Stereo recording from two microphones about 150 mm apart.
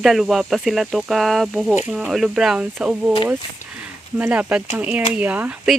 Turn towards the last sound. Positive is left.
turn(degrees=-10)  # may be behind; listen again after turning